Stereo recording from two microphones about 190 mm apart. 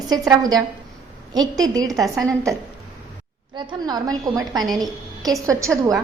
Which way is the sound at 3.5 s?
20° right (ahead or behind).